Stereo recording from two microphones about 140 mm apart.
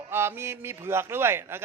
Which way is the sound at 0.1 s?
15° right (ahead or behind).